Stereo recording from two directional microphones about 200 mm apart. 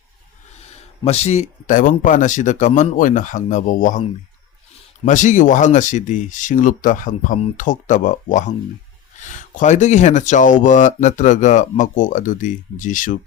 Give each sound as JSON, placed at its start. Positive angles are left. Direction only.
{"t": 0.6, "sound": "speech", "side_deg": 30}
{"t": 5.0, "sound": "speech", "side_deg": 40}